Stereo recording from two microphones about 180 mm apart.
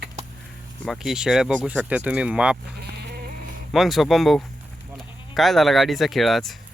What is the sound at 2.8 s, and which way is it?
Sheep, 65° right (ahead or behind).